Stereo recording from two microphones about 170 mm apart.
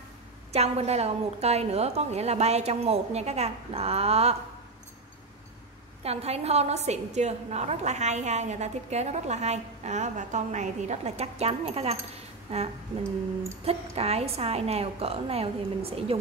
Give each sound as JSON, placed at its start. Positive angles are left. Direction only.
{"t": 0.5, "sound": "a woman's voice", "side_deg": -35}
{"t": 6.0, "sound": "a woman's voice", "side_deg": -40}
{"t": 13.7, "sound": "a woman's voice", "side_deg": -35}